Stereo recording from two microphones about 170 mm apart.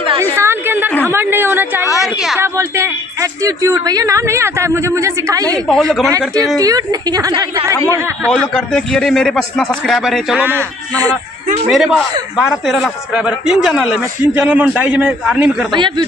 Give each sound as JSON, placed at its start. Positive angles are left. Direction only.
{"t": 0.4, "sound": "a sound", "side_deg": -15}
{"t": 1.0, "sound": "a woman's voice", "side_deg": -10}
{"t": 1.9, "sound": "a man's voice", "side_deg": 0}
{"t": 2.3, "sound": "a woman's voice", "side_deg": -15}
{"t": 5.7, "sound": "a man's voice", "side_deg": 5}
{"t": 6.0, "sound": "a woman's voice", "side_deg": -20}
{"t": 8.5, "sound": "a man's voice", "side_deg": 5}
{"t": 10.4, "sound": "a woman's voice", "side_deg": -15}
{"t": 11.7, "sound": "a man's voice", "side_deg": 0}